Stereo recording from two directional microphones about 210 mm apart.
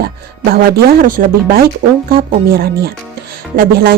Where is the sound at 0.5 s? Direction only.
45° right (ahead or behind).